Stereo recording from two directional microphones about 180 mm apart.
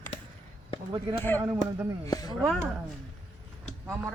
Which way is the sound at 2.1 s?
20° left (ahead or behind).